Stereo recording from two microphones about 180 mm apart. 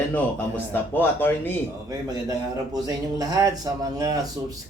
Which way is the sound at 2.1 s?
20° right (ahead or behind).